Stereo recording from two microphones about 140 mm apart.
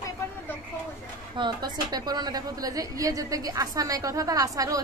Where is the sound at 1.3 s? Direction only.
30° right (ahead or behind).